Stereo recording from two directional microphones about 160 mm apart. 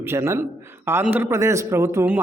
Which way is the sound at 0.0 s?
15° right (ahead or behind).